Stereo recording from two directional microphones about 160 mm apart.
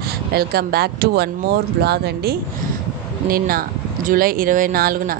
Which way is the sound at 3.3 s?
65° right (ahead or behind).